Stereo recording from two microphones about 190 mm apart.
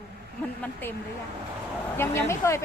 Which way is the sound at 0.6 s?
10° left (ahead or behind).